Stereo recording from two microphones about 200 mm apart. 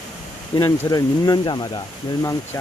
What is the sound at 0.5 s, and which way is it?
Speech, 20° left (ahead or behind).